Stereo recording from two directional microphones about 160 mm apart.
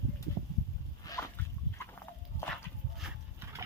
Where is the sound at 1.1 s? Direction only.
20° left (ahead or behind).